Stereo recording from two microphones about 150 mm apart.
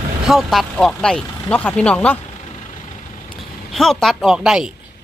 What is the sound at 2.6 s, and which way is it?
Vehicle, 55° left (ahead or behind).